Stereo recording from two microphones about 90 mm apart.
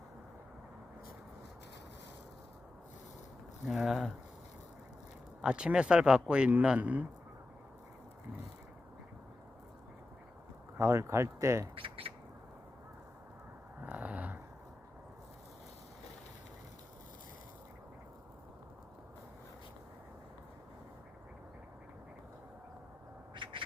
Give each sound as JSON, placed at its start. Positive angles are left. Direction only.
{"t": 3.7, "sound": "speech", "side_deg": -5}
{"t": 5.4, "sound": "speech", "side_deg": -10}
{"t": 10.8, "sound": "speech", "side_deg": -30}
{"t": 11.7, "sound": "a sound", "side_deg": -85}
{"t": 13.8, "sound": "a sound", "side_deg": -15}
{"t": 23.3, "sound": "quack", "side_deg": -70}